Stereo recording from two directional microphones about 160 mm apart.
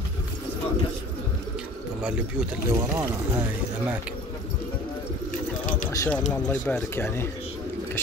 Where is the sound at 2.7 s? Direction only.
20° right (ahead or behind).